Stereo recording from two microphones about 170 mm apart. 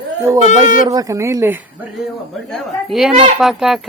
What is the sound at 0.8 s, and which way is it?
Speech, 20° right (ahead or behind).